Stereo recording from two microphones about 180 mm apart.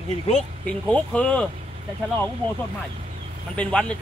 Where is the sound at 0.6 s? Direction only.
5° left (ahead or behind).